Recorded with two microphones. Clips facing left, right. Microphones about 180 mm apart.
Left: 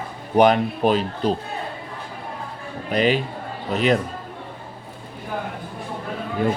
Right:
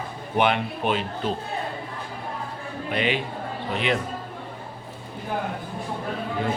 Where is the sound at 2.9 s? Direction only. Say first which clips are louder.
Left 6 dB; 40° left (ahead or behind).